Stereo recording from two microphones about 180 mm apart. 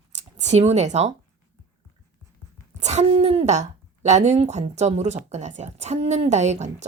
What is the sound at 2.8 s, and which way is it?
Speech, 40° right (ahead or behind).